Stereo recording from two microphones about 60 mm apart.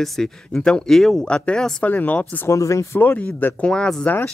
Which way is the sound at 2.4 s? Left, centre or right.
Left.